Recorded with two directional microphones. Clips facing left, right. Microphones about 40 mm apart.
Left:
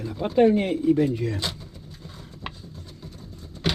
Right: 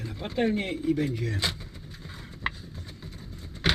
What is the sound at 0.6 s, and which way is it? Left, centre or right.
Speech, centre.